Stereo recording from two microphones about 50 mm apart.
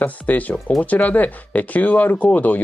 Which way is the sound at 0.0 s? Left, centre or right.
Left.